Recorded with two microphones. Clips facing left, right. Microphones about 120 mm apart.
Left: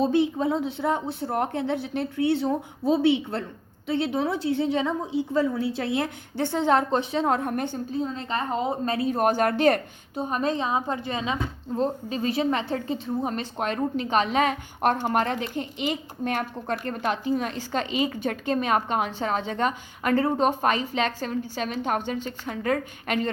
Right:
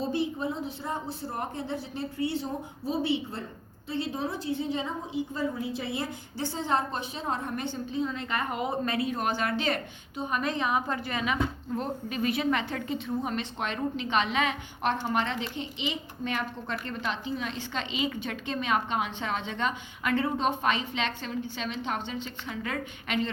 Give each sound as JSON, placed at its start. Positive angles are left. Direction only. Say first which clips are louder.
{"t": 0.1, "sound": "a woman's voice", "louder": "left 7 dB", "side_deg": 85}
{"t": 7.1, "sound": "a woman's voice", "louder": "left 8 dB", "side_deg": 85}
{"t": 9.1, "sound": "a woman's voice", "louder": "left 7 dB", "side_deg": 45}
{"t": 10.2, "sound": "a woman's voice", "louder": "left 4 dB", "side_deg": 35}